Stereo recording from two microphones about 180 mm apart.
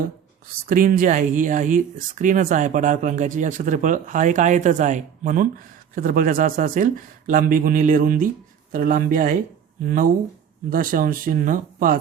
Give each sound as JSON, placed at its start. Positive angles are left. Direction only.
{"t": 0.7, "sound": "speech", "side_deg": -50}